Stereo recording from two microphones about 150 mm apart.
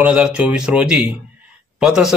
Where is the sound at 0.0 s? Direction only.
5° right (ahead or behind).